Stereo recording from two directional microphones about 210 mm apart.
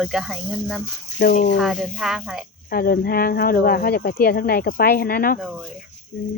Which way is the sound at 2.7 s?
45° left (ahead or behind).